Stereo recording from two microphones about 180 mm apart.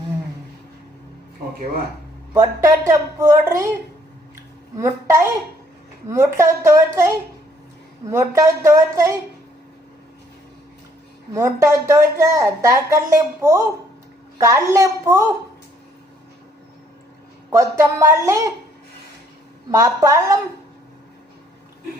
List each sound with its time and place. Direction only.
2.3 s speech: 15° right (ahead or behind)
4.8 s speech: 15° right (ahead or behind)
8.1 s speech: 15° right (ahead or behind)
11.3 s speech: 15° right (ahead or behind)
17.5 s speech: 15° right (ahead or behind)
19.7 s speech: 15° right (ahead or behind)